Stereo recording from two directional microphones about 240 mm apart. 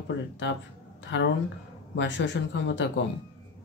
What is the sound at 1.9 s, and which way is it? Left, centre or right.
Speech, left.